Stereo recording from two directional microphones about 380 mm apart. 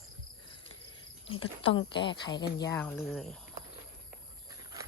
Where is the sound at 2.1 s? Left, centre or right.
Centre.